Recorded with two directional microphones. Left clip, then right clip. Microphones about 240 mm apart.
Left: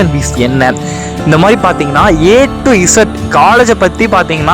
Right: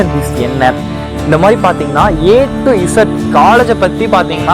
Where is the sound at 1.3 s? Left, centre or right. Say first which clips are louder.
Left 1 dB; left.